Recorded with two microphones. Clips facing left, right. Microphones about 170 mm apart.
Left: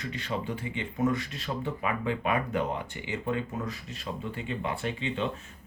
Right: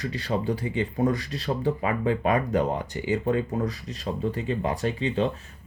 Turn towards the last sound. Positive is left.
turn(degrees=-35)  # may be behind; listen again after turning